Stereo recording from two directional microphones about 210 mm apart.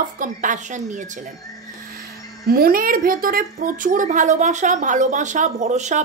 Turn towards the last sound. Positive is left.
turn(degrees=-35)  # may be behind; listen again after turning